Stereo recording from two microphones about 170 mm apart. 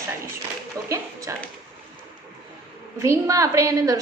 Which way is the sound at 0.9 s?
20° right (ahead or behind).